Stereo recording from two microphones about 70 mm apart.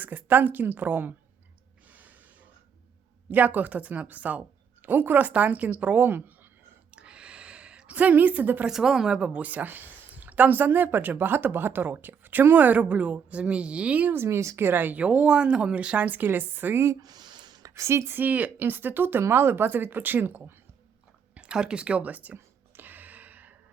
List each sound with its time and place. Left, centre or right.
0.0 s a woman's voice: right
1.9 s snort: right
3.2 s a woman's voice: right
6.9 s a sound: centre
8.6 s a woman's voice: centre
14.1 s a woman's voice: right
17.0 s a sound: right
17.6 s a woman's voice: right
21.3 s speech: centre
22.4 s a sound: right